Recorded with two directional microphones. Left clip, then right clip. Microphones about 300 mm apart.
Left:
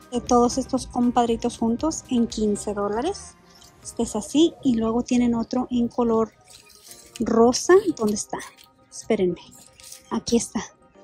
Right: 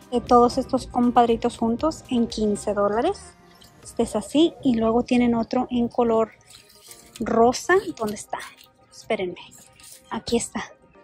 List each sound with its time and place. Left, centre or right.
0.3 s speech: centre